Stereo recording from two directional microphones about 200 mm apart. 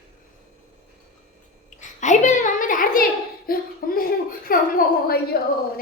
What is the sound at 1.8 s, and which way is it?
A child's voice, 35° left (ahead or behind).